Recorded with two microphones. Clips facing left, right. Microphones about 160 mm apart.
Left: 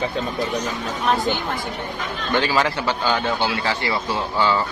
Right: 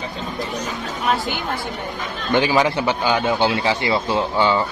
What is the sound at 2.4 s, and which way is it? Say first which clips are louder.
A man's voice: right 3 dB; 15° right (ahead or behind).